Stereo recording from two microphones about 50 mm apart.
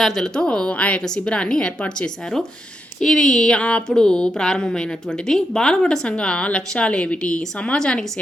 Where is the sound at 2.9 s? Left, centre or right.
Centre.